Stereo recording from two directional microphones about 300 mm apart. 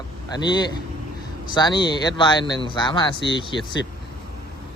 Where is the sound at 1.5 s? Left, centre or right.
Centre.